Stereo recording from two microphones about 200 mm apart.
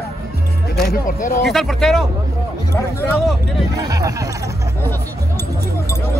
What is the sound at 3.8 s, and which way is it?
Speech, 15° right (ahead or behind).